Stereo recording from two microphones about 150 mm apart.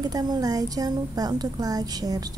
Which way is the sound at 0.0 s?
25° right (ahead or behind).